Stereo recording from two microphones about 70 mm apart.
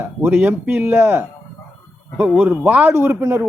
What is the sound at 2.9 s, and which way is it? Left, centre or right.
Speech, right.